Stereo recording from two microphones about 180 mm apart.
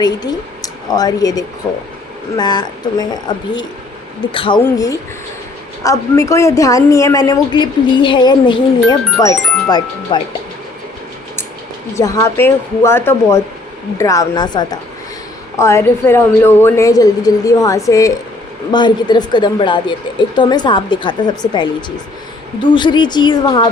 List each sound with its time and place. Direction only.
0.0 s a woman's voice: 20° left (ahead or behind)
11.9 s a woman's voice: 20° left (ahead or behind)